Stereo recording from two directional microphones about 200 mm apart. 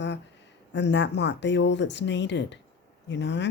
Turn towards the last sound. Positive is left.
turn(degrees=60)  # may be behind; listen again after turning